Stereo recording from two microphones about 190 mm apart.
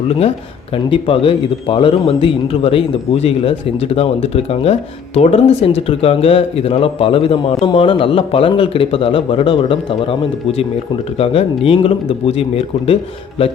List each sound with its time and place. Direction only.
0.9 s speech: 30° left (ahead or behind)
11.2 s speech: 30° left (ahead or behind)